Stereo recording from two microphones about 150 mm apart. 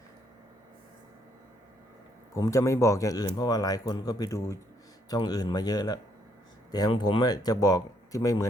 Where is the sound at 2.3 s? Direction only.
20° left (ahead or behind).